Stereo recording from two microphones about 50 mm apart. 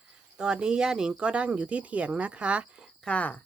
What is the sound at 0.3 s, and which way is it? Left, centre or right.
Speech, centre.